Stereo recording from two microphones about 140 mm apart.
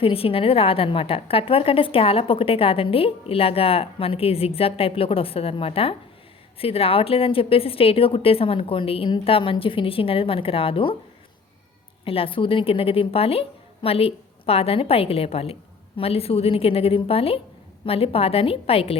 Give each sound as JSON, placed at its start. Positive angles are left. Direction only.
{"t": 0.0, "sound": "a woman's voice", "side_deg": 40}
{"t": 12.0, "sound": "a woman's voice", "side_deg": 40}